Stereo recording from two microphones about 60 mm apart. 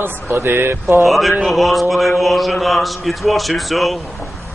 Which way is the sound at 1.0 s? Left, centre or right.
Centre.